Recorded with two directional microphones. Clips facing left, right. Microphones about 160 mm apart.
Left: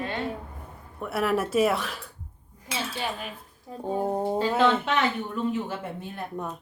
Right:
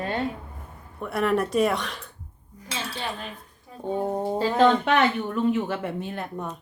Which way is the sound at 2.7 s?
5° left (ahead or behind).